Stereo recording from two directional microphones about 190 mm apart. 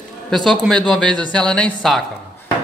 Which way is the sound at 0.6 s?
5° left (ahead or behind).